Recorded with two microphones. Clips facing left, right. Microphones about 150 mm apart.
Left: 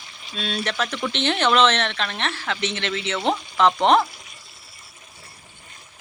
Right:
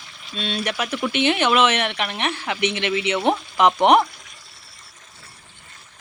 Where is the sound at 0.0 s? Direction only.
Centre (ahead or behind).